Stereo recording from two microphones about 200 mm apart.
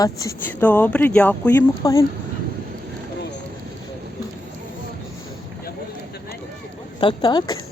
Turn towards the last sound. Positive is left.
turn(degrees=20)  # may be behind; listen again after turning